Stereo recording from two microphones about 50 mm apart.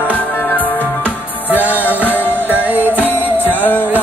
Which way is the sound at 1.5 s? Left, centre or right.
Right.